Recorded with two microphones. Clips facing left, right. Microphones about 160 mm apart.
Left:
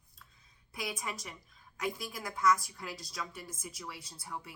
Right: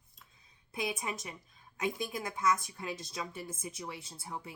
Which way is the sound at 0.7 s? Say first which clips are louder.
Right 3 dB; 25° right (ahead or behind).